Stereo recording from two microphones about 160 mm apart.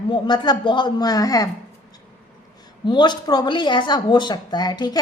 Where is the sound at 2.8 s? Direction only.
30° left (ahead or behind).